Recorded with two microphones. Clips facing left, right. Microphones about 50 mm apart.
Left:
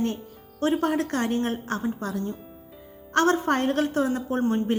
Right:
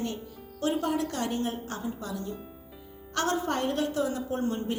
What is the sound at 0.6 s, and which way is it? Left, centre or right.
A woman's voice, left.